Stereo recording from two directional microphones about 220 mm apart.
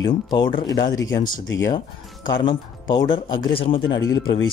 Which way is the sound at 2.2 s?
20° left (ahead or behind).